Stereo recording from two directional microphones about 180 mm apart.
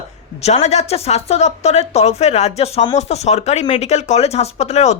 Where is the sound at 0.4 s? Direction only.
40° left (ahead or behind).